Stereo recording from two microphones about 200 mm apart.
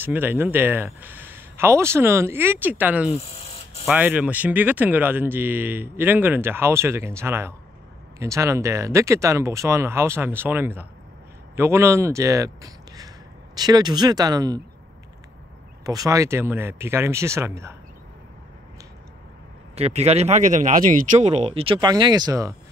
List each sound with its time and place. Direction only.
0.0 s speech: 10° right (ahead or behind)
15.8 s speech: 15° right (ahead or behind)
19.7 s speech: 30° right (ahead or behind)